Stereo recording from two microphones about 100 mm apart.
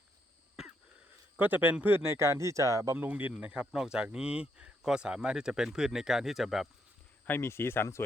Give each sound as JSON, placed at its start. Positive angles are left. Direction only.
{"t": 1.4, "sound": "speech", "side_deg": -20}
{"t": 3.0, "sound": "speech", "side_deg": -15}
{"t": 7.3, "sound": "speech", "side_deg": 25}